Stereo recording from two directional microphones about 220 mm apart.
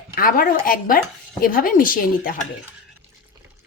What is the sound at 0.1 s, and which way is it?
A woman's voice, 40° left (ahead or behind).